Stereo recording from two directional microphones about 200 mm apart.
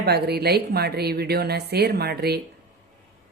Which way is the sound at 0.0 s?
55° right (ahead or behind).